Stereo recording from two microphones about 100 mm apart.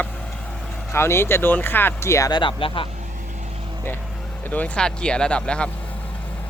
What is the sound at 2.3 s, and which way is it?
Speech, 60° left (ahead or behind).